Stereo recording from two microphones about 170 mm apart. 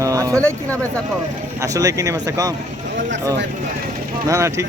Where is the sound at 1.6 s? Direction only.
20° right (ahead or behind).